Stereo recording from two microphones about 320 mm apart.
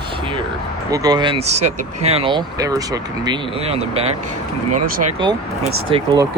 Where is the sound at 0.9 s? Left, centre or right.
Centre.